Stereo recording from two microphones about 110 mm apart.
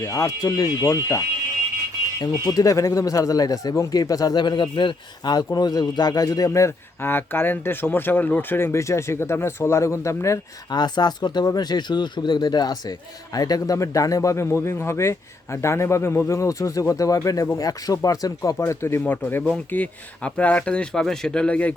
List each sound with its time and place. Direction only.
0.0 s speech: 30° left (ahead or behind)
2.2 s a man's voice: 35° left (ahead or behind)
10.8 s a man's voice: 40° left (ahead or behind); by 21.8 s 10° left (ahead or behind)